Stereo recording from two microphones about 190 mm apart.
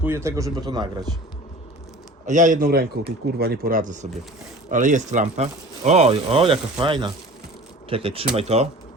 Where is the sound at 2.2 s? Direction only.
40° right (ahead or behind).